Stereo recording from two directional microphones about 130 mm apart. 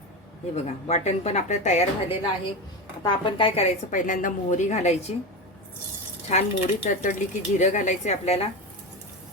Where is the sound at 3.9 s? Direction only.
80° left; by 5.1 s 60° left (ahead or behind).